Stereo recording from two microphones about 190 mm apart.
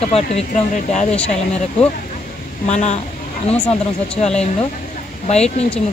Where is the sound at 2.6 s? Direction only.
35° left (ahead or behind).